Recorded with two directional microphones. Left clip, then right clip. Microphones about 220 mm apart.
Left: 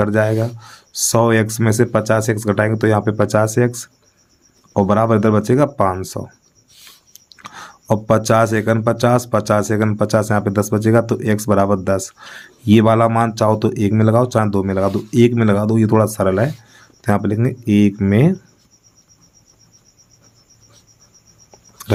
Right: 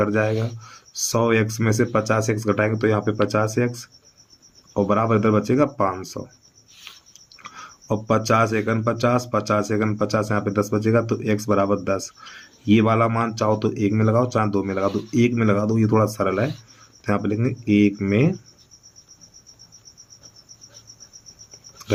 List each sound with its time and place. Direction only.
0.0 s speech: 45° left (ahead or behind)